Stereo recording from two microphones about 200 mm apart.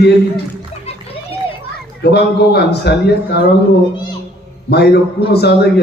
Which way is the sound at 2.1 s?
55° left (ahead or behind).